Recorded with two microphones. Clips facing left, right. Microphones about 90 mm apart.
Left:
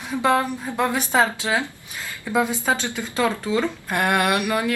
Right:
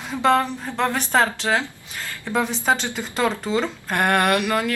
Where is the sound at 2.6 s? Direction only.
20° right (ahead or behind).